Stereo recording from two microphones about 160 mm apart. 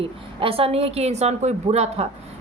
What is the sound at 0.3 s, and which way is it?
A woman's voice, 35° right (ahead or behind).